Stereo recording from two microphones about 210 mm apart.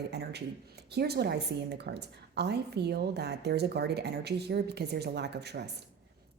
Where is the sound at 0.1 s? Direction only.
50° right (ahead or behind).